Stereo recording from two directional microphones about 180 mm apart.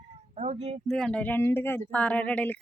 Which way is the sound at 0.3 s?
35° right (ahead or behind).